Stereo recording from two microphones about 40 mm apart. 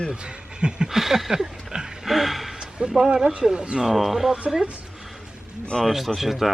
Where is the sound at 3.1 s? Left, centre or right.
Right.